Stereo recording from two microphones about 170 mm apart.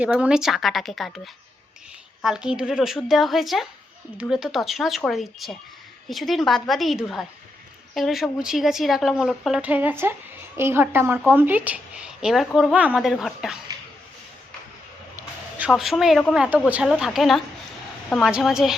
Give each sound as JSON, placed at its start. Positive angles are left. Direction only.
{"t": 0.0, "sound": "speech", "side_deg": -5}
{"t": 15.1, "sound": "a sound", "side_deg": -10}
{"t": 15.7, "sound": "speech", "side_deg": 0}